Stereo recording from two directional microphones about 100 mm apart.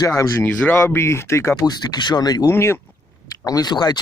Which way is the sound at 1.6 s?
45° left (ahead or behind).